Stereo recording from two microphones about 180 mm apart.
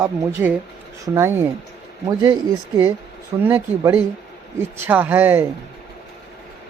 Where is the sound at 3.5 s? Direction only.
10° right (ahead or behind).